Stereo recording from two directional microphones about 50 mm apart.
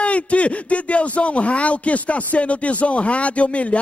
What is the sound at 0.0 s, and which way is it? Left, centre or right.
Speech, left.